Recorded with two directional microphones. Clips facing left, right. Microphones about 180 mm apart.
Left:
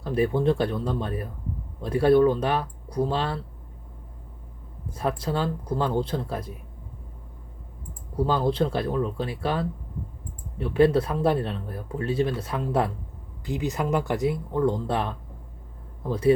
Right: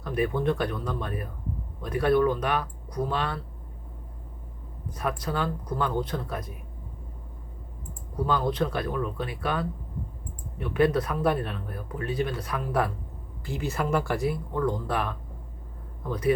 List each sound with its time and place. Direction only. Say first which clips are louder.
0.0 s speech: left 3 dB; 30° left (ahead or behind)
4.9 s speech: left 3 dB; 25° left (ahead or behind)
8.1 s speech: left 3 dB; 30° left (ahead or behind)